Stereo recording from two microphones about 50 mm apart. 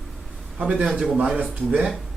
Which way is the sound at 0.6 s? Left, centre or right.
Right.